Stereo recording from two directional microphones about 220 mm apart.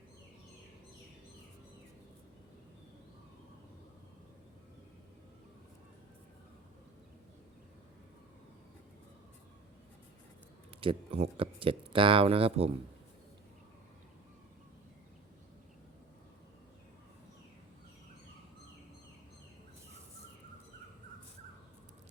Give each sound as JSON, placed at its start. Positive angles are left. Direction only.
{"t": 10.8, "sound": "speech", "side_deg": -25}